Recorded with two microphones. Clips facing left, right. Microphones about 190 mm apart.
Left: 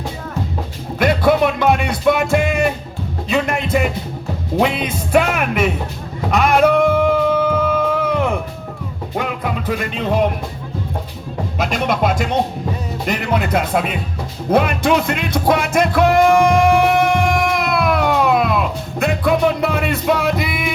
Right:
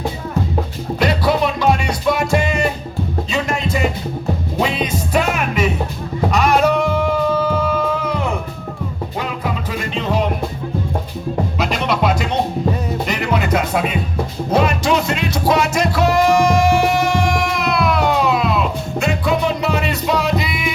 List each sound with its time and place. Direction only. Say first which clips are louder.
0.9 s music: left 3 dB; 50° left (ahead or behind)
11.5 s speech: left 5 dB; 50° left (ahead or behind)
13.1 s music: left 2 dB; 50° left (ahead or behind)